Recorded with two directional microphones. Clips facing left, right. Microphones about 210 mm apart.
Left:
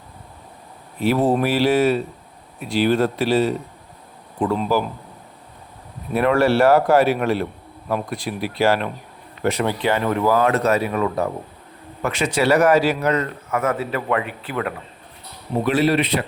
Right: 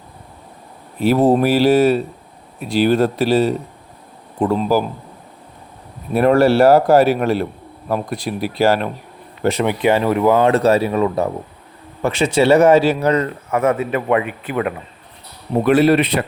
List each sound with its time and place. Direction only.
1.0 s a man's voice: 40° right (ahead or behind)
6.1 s a man's voice: 40° right (ahead or behind)
9.4 s speech: 25° right (ahead or behind)
15.6 s speech: 55° right (ahead or behind)